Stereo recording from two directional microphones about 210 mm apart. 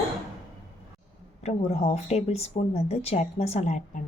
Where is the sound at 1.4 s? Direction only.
30° left (ahead or behind).